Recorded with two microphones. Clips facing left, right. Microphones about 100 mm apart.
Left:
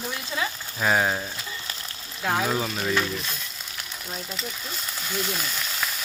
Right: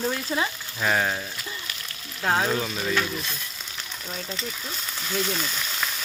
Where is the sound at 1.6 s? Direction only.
30° left (ahead or behind).